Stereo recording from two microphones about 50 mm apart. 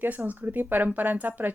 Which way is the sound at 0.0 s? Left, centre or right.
Right.